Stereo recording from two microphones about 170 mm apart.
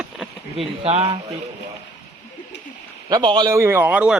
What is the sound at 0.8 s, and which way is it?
Speech, 35° right (ahead or behind).